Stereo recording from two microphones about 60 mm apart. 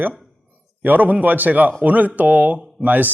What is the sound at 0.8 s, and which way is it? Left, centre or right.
Speech, right.